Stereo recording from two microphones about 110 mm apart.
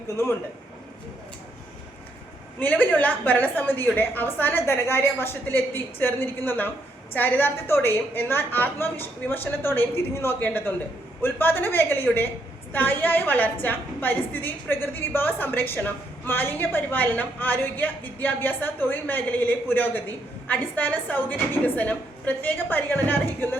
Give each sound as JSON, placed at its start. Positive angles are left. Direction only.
{"t": 2.6, "sound": "a woman's voice", "side_deg": 15}